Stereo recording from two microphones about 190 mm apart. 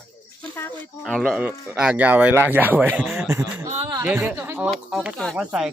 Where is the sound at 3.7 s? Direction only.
30° right (ahead or behind).